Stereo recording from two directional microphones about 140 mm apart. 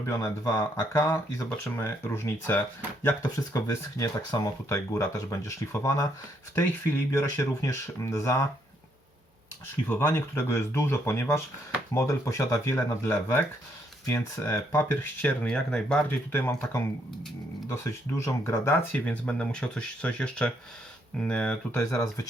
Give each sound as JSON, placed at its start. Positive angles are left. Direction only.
{"t": 0.0, "sound": "speech", "side_deg": 20}
{"t": 9.9, "sound": "speech", "side_deg": 20}
{"t": 18.4, "sound": "speech", "side_deg": 20}
{"t": 21.8, "sound": "speech", "side_deg": 20}